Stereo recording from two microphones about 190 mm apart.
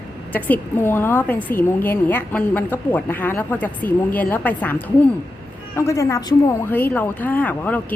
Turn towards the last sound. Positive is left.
turn(degrees=10)  # may be behind; listen again after turning